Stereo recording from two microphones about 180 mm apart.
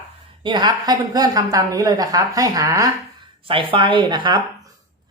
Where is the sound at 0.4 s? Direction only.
25° right (ahead or behind).